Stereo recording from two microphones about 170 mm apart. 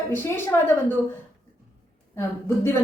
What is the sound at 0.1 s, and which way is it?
Speech, 10° left (ahead or behind).